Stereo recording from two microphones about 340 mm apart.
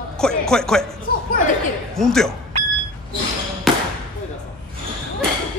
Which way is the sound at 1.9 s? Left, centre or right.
Centre.